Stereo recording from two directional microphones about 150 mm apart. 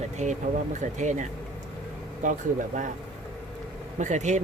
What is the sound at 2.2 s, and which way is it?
Speech, 55° right (ahead or behind).